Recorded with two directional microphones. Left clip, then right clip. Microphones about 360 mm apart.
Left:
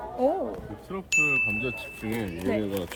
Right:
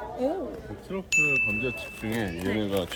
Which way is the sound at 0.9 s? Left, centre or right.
Centre.